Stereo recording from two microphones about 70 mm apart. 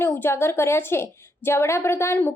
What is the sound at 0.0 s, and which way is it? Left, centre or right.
Speech, left.